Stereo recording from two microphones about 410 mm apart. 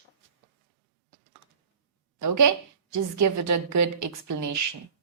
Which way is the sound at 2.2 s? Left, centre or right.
Right.